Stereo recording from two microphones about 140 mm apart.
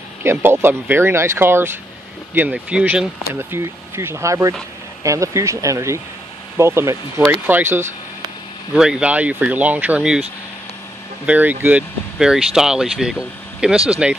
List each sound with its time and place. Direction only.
0.2 s speech: 15° right (ahead or behind)
8.7 s speech: 5° right (ahead or behind)
11.2 s speech: 15° right (ahead or behind)